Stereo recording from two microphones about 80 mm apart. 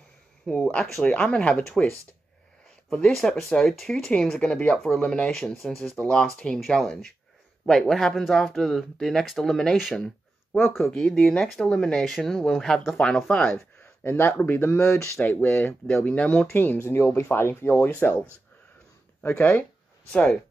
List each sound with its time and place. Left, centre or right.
0.5 s speech: centre
2.9 s speech: centre
9.8 s speech: centre
10.9 s speech: centre
13.7 s a man's voice: left
17.8 s speech: centre
20.1 s speech: centre